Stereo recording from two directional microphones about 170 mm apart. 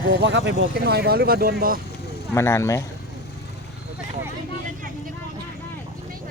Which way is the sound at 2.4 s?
15° left (ahead or behind).